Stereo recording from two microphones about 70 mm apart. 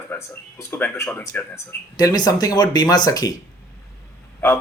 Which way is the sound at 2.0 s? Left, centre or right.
Left.